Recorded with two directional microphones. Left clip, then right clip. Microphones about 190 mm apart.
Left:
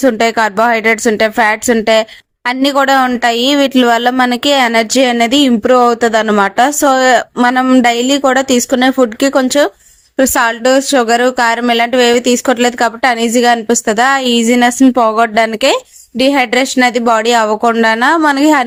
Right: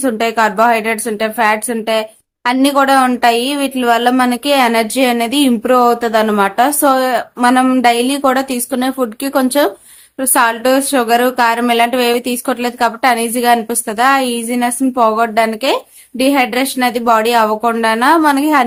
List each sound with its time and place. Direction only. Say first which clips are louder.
0.0 s a woman's voice: left 3 dB; 40° left (ahead or behind)